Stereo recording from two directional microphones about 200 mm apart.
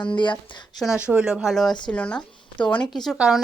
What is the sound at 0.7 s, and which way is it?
A woman's voice, centre (ahead or behind).